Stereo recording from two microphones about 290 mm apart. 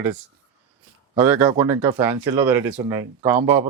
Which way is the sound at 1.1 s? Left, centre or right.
Centre.